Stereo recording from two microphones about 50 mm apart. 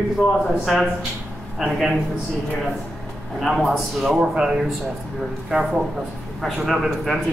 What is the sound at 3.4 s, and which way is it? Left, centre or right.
Speech, centre.